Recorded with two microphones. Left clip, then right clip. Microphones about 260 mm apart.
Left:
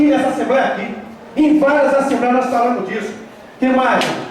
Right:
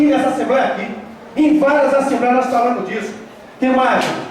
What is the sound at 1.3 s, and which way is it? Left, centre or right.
Speech, centre.